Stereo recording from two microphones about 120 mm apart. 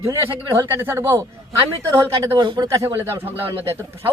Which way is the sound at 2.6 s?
25° right (ahead or behind).